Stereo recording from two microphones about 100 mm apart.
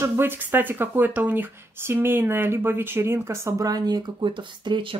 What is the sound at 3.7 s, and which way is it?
Speech, 45° right (ahead or behind).